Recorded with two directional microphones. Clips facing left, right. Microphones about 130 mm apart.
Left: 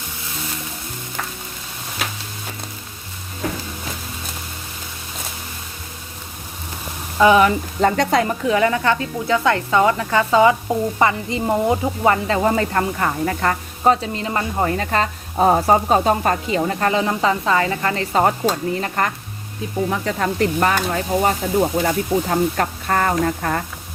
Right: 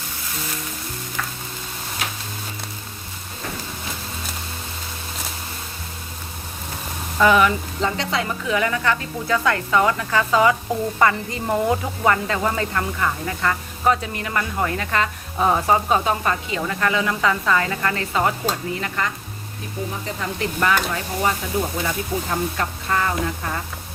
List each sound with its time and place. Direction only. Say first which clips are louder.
7.2 s a woman's voice: left 3 dB; 20° left (ahead or behind)
7.4 s stir: left 4 dB; 50° left (ahead or behind)
8.4 s a woman's voice: left 2 dB; 30° left (ahead or behind)
19.9 s speech: left 7 dB; 65° left (ahead or behind)
20.4 s stir: left 2 dB; 40° left (ahead or behind); by 23.6 s 55° left (ahead or behind)